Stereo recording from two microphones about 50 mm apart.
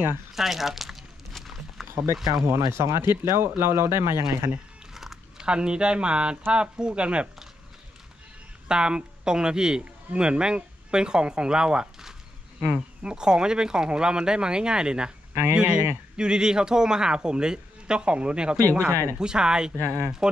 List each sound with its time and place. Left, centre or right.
0.3 s a sound: centre
2.4 s speech: right
3.3 s speech: right
4.9 s a sound: centre
5.4 s speech: centre
8.6 s a man's voice: centre
18.7 s speech: right
19.1 s speech: centre
19.8 s speech: right